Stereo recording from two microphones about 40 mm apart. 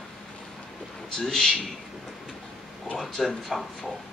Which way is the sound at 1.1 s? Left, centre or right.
Centre.